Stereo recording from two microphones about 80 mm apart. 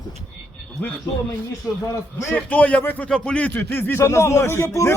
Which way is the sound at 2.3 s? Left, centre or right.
Centre.